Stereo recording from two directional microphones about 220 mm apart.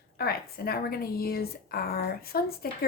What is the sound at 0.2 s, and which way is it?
A woman's voice, 45° left (ahead or behind).